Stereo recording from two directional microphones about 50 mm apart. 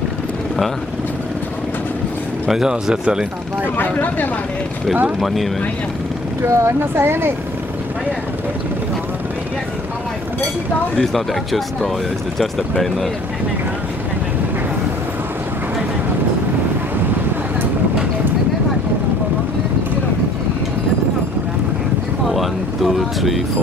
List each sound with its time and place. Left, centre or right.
2.4 s speech: centre
3.7 s speech: left
5.2 s speech: centre
6.4 s speech: right
11.0 s speech: centre
22.3 s vehicle: centre